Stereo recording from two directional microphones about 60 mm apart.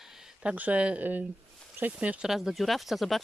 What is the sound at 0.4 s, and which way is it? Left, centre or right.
Speech, right.